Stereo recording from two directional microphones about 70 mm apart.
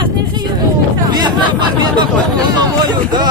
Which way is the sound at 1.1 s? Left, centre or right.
Right.